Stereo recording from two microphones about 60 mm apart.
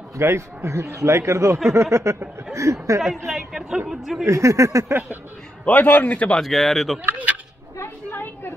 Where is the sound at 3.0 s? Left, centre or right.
Centre.